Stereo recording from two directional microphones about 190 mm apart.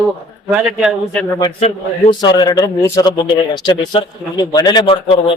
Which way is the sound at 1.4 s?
30° left (ahead or behind).